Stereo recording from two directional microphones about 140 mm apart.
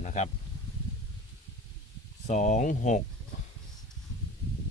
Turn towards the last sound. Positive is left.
turn(degrees=60)  # may be behind; listen again after turning